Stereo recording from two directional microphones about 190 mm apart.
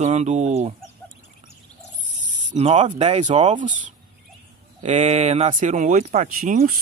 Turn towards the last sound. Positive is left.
turn(degrees=-45)  # may be behind; listen again after turning